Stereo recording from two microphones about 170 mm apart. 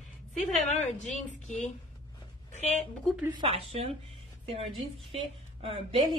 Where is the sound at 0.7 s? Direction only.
45° left (ahead or behind).